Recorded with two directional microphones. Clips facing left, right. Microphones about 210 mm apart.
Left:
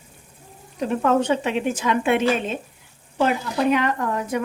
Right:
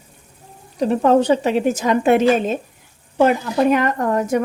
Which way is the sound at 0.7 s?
35° right (ahead or behind).